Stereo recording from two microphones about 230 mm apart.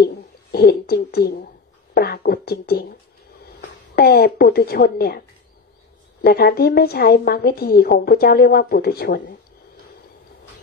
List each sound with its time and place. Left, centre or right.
0.0 s a sound: left
3.9 s a woman's voice: left
6.2 s a woman's voice: left